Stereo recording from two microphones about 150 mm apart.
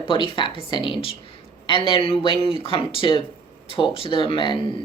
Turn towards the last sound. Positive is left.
turn(degrees=35)  # may be behind; listen again after turning